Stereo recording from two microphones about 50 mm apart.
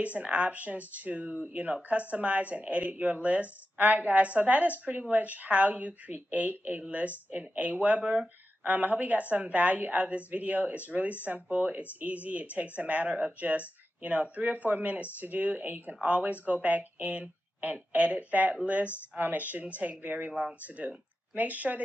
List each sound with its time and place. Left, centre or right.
0.0 s speech: right
8.0 s speech: centre
8.6 s speech: right